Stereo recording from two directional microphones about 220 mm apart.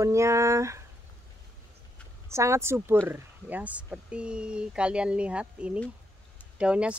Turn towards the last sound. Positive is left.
turn(degrees=-5)  # may be behind; listen again after turning